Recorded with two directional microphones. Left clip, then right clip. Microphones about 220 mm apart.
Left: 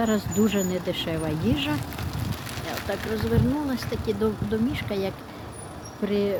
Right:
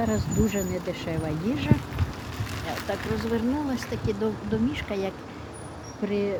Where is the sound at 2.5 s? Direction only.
55° left (ahead or behind).